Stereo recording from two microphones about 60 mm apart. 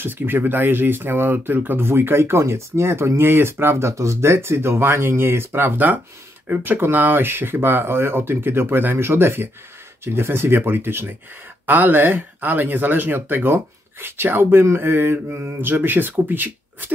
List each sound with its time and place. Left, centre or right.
0.0 s speech: right
3.9 s speech: right